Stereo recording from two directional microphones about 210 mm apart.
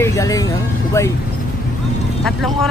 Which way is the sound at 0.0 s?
15° left (ahead or behind).